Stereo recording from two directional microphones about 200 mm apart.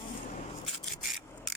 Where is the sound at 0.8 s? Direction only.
Centre (ahead or behind).